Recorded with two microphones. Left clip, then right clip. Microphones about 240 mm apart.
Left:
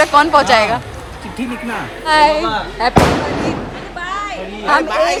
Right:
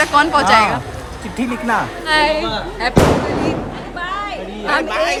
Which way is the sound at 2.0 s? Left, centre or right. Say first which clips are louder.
Left 6 dB; centre.